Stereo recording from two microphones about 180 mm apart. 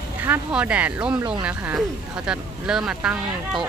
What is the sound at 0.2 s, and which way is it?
Speech, 10° right (ahead or behind).